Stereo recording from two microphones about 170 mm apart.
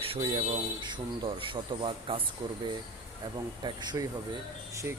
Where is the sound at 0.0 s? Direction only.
35° right (ahead or behind).